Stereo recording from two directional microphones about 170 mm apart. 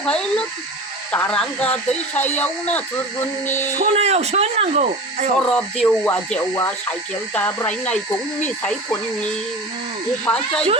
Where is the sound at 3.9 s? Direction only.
40° right (ahead or behind).